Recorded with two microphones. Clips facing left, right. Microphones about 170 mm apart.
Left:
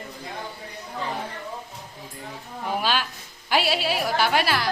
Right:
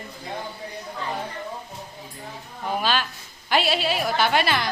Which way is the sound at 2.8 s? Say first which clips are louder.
Right 1 dB; 10° left (ahead or behind).